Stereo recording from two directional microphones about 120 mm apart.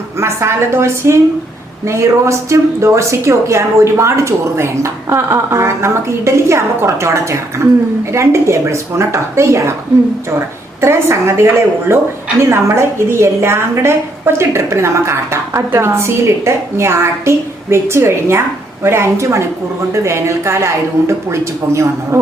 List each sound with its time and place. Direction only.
0.2 s a woman's voice: 20° right (ahead or behind)
10.8 s a woman's voice: 20° right (ahead or behind)